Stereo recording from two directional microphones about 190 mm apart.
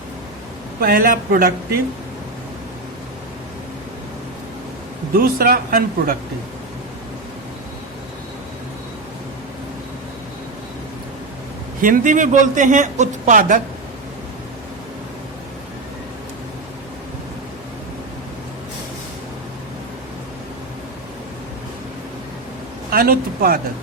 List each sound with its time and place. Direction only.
0.8 s speech: 50° right (ahead or behind)
5.1 s speech: 50° right (ahead or behind)
11.8 s a man's voice: 45° right (ahead or behind)
22.9 s speech: 50° right (ahead or behind)